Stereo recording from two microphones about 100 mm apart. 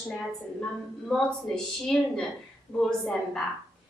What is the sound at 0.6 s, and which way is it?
A woman's voice, 5° left (ahead or behind).